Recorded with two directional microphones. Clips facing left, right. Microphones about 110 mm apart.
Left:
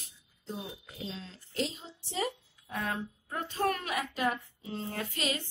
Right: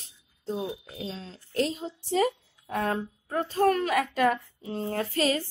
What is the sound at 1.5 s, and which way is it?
A woman's voice, 50° right (ahead or behind).